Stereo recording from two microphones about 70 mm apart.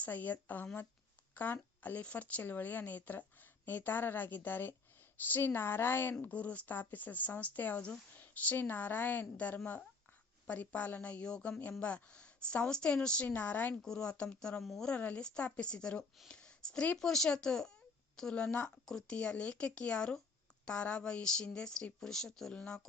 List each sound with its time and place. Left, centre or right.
0.0 s speech: left
6.1 s speech: centre
10.4 s speech: left
13.8 s speech: centre
14.6 s speech: centre
14.8 s speech: centre